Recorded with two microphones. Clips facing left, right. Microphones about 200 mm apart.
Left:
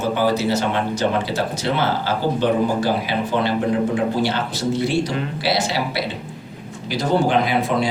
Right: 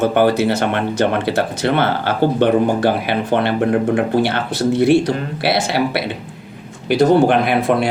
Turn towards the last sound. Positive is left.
turn(degrees=-60)  # may be behind; listen again after turning